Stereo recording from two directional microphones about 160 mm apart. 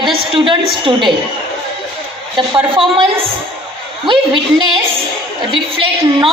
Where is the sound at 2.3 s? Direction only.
30° right (ahead or behind).